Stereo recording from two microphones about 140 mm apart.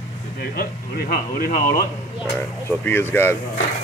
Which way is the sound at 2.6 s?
15° left (ahead or behind).